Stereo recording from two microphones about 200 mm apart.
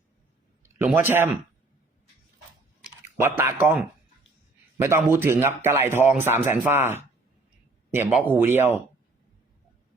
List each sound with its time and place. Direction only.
0.6 s a man's voice: 10° right (ahead or behind)
3.0 s speech: 10° right (ahead or behind)